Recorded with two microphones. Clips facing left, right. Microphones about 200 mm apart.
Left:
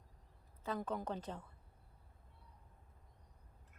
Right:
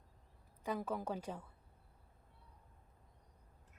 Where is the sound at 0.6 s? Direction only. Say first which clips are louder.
Right 1 dB; 10° right (ahead or behind).